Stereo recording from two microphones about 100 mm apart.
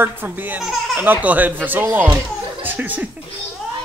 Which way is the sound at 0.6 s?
Centre (ahead or behind).